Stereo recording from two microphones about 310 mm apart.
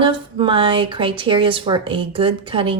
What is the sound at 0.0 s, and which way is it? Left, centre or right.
Speech, centre.